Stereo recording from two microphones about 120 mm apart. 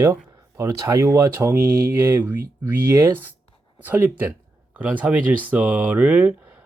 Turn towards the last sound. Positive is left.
turn(degrees=-15)  # may be behind; listen again after turning